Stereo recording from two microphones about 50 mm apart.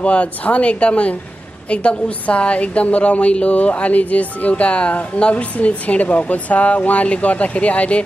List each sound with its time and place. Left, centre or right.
0.0 s a woman's voice: left